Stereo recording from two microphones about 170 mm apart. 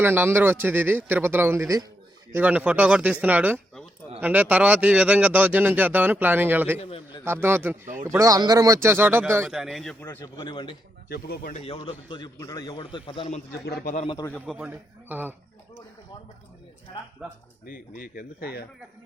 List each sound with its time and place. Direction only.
0.0 s speech: 10° right (ahead or behind)
6.7 s a man's voice: 30° left (ahead or behind)
7.4 s speech: 10° right (ahead or behind)
9.5 s a man's voice: centre (ahead or behind)
10.3 s a man's voice: 30° left (ahead or behind)
11.1 s speech: 65° left (ahead or behind)
11.6 s a man's voice: 30° left (ahead or behind)
13.8 s a man's voice: 45° left (ahead or behind)
14.4 s a man's voice: centre (ahead or behind)
17.2 s speech: 5° right (ahead or behind)
17.7 s speech: 55° left (ahead or behind)